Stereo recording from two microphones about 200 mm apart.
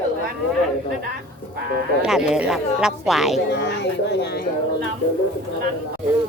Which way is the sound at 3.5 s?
55° left (ahead or behind).